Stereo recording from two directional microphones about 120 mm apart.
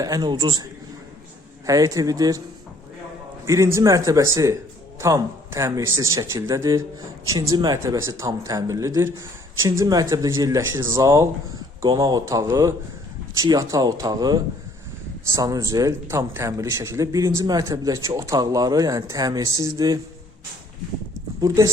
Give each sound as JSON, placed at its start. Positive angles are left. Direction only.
{"t": 0.0, "sound": "speech", "side_deg": -35}
{"t": 3.4, "sound": "speech", "side_deg": -25}
{"t": 21.4, "sound": "speech", "side_deg": -30}